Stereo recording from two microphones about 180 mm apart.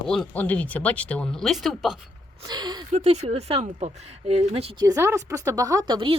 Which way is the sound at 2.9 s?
40° right (ahead or behind).